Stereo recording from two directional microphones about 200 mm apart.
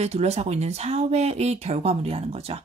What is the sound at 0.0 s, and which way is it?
Speech, 35° right (ahead or behind).